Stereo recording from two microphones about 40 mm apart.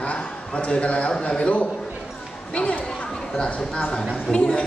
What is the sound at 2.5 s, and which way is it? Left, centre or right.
Speech, left.